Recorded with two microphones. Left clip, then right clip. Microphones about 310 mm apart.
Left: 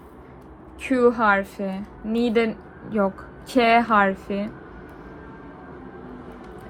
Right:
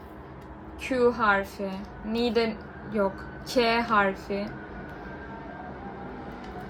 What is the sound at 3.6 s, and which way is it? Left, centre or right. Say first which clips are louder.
Speech: left 8 dB; centre.